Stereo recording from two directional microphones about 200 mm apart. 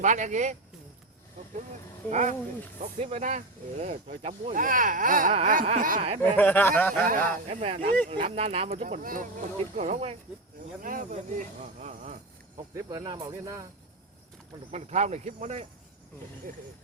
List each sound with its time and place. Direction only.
0.0 s speech: 40° right (ahead or behind)
2.0 s speech: 35° right (ahead or behind)
6.3 s speech: 10° left (ahead or behind)
7.1 s speech: 35° right (ahead or behind)
10.8 s speech: 45° right (ahead or behind)
12.9 s speech: 20° right (ahead or behind)
14.7 s speech: 35° right (ahead or behind)